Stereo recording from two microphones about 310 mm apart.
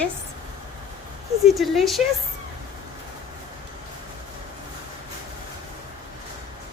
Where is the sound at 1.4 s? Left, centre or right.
Centre.